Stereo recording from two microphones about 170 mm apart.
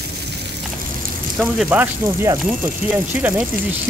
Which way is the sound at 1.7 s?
15° right (ahead or behind).